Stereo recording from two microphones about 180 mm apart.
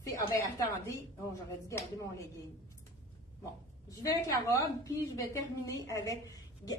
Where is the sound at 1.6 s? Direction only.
15° left (ahead or behind).